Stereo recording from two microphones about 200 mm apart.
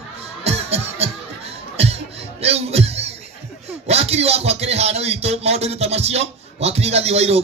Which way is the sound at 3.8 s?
30° right (ahead or behind).